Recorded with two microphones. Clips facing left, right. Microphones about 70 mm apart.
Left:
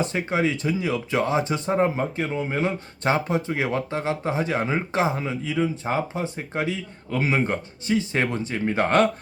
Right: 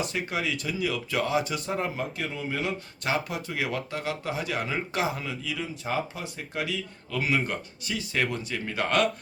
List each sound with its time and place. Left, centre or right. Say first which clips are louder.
0.0 s speech: left 6 dB; left